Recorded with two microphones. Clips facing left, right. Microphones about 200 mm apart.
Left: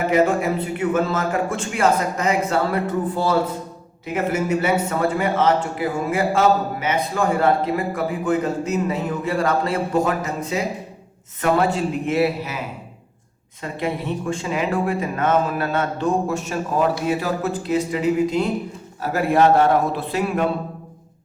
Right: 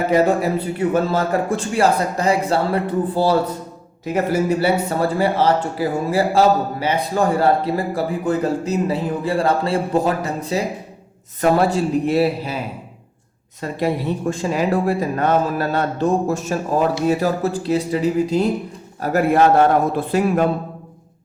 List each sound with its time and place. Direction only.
0.1 s a man's voice: 35° right (ahead or behind)
13.6 s a man's voice: 40° right (ahead or behind)